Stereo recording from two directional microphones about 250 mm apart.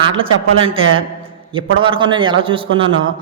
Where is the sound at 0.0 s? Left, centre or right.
Centre.